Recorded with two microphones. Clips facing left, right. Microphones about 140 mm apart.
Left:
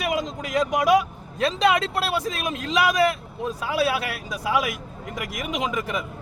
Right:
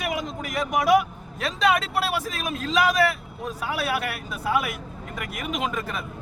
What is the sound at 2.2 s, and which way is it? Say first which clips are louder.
Speech: left 2 dB; 15° left (ahead or behind).